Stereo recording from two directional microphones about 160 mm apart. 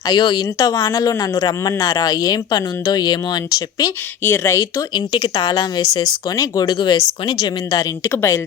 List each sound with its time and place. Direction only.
0.1 s speech: 25° left (ahead or behind)
4.9 s speech: 30° left (ahead or behind)